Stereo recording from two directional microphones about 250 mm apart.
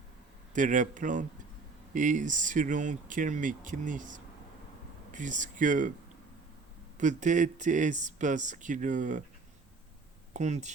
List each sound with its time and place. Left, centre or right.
0.5 s speech: right
6.9 s speech: right
10.3 s speech: right